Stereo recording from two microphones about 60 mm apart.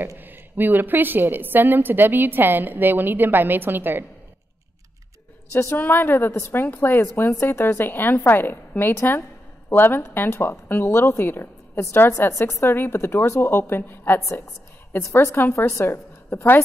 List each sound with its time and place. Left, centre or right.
0.2 s a woman's voice: right
5.6 s a woman's voice: left
15.5 s a woman's voice: left